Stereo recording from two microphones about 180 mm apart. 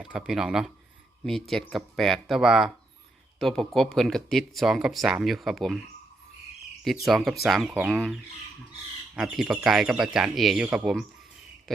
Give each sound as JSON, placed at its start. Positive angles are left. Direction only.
{"t": 0.0, "sound": "speech", "side_deg": -5}
{"t": 7.0, "sound": "speech", "side_deg": 0}